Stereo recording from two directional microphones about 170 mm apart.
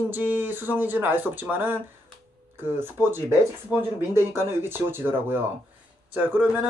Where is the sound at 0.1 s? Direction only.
10° right (ahead or behind).